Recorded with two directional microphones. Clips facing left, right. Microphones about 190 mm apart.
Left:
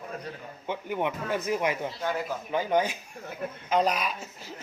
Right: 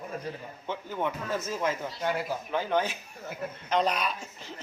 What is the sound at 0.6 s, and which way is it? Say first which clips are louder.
Speech: left 2 dB; 15° left (ahead or behind).